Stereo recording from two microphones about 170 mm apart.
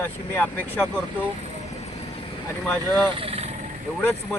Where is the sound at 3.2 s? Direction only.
35° right (ahead or behind).